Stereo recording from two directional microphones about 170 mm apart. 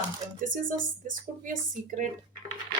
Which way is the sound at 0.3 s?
55° right (ahead or behind).